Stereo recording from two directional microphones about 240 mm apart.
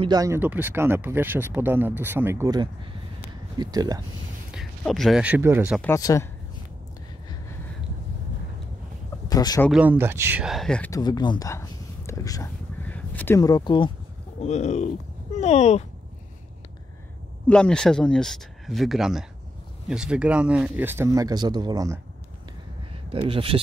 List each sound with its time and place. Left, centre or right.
0.0 s speech: centre
4.5 s speech: centre
5.8 s speech: centre
9.3 s speech: centre
9.7 s speech: centre
12.1 s a sound: centre
14.4 s speech: left
17.5 s speech: centre
23.0 s speech: right